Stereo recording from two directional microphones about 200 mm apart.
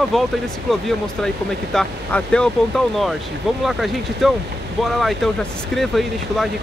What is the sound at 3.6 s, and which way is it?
Speech, centre (ahead or behind).